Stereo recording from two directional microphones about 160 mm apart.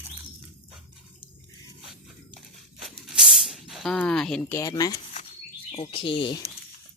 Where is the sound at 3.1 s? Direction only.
5° right (ahead or behind).